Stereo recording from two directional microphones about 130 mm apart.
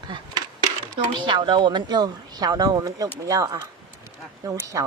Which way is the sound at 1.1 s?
35° right (ahead or behind).